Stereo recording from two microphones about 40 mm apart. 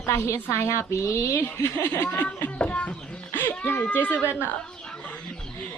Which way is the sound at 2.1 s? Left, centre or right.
Left.